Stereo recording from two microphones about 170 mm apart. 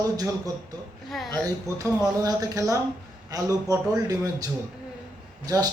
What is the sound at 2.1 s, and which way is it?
Speech, 20° right (ahead or behind).